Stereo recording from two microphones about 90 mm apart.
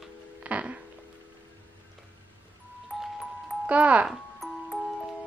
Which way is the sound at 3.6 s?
15° right (ahead or behind).